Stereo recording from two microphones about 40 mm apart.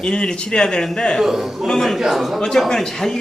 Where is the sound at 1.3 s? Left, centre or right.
Centre.